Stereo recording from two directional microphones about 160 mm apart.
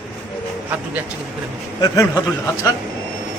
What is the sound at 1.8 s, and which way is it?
Speech, 20° left (ahead or behind).